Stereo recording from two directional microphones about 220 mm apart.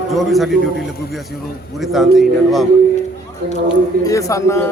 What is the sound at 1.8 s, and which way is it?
Speech, centre (ahead or behind).